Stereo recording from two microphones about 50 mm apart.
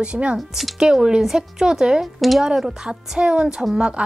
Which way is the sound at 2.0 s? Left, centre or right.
Centre.